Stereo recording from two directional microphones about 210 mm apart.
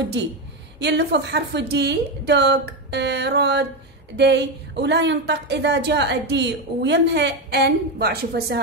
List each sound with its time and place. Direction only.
0.7 s a woman's voice: 55° right (ahead or behind)